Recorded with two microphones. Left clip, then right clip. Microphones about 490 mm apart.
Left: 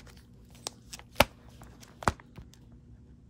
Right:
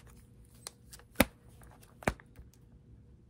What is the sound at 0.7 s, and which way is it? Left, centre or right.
Shuffling cards, centre.